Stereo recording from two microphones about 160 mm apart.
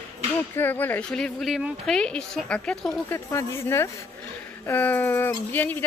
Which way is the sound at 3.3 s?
15° left (ahead or behind).